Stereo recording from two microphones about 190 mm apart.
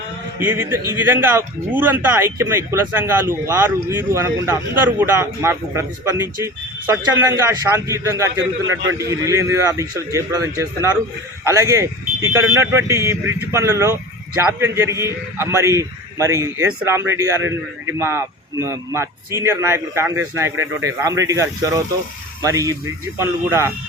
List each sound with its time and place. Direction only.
0.3 s speech: 10° right (ahead or behind)
8.6 s a man's voice: 90° right
9.0 s speech: 15° right (ahead or behind)